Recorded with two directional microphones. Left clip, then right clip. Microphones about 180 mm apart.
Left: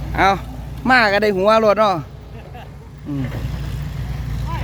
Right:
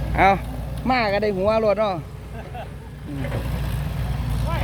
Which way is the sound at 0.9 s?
40° left (ahead or behind).